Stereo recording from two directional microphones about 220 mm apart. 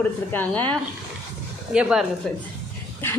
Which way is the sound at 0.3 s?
10° left (ahead or behind).